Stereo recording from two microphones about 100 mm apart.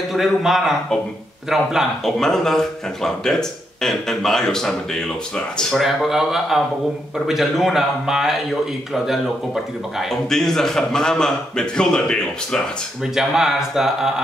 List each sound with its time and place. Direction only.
0.1 s a man's voice: centre (ahead or behind)
13.0 s speech: 5° right (ahead or behind)